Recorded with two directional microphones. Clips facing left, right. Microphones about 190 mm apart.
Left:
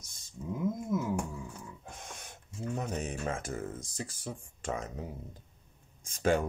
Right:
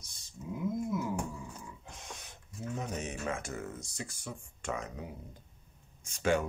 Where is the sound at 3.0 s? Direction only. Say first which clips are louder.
Left 1 dB; 35° left (ahead or behind).